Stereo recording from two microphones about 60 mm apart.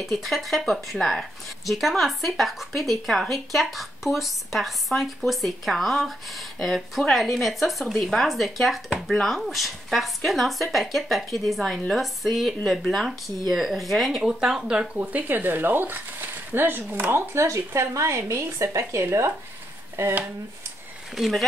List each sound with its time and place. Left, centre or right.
0.0 s a woman's voice: centre
14.2 s speech: centre
15.0 s speech: right
21.2 s a woman's voice: centre